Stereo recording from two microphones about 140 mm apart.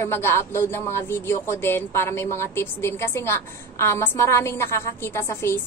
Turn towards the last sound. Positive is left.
turn(degrees=20)  # may be behind; listen again after turning